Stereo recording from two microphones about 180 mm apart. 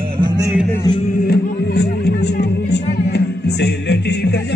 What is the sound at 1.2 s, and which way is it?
Music, 60° left (ahead or behind).